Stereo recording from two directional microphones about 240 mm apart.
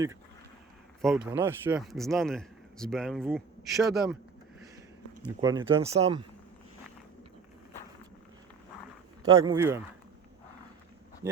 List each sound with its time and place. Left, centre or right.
1.0 s speech: centre
5.4 s speech: centre
5.8 s speech: right
9.4 s speech: centre
11.2 s speech: centre